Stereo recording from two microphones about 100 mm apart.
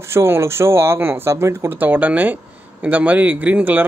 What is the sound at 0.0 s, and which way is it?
Speech, 25° right (ahead or behind).